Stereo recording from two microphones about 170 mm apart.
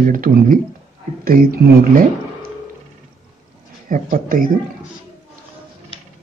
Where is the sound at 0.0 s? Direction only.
55° right (ahead or behind).